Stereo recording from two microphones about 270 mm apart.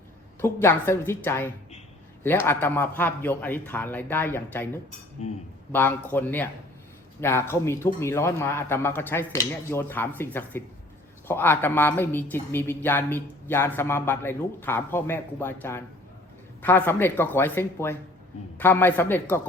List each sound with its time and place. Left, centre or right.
0.4 s a man's voice: centre
5.2 s speech: left
5.7 s a man's voice: centre